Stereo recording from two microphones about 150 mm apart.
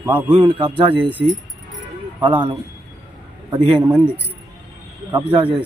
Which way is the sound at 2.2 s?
30° right (ahead or behind).